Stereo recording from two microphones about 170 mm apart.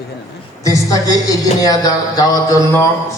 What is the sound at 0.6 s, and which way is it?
Speech, 20° left (ahead or behind).